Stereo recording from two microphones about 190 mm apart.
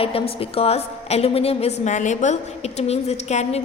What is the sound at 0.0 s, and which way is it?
A woman's voice, 30° left (ahead or behind).